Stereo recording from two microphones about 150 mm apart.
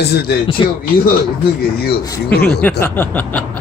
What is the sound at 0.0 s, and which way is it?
Speech, 90° left.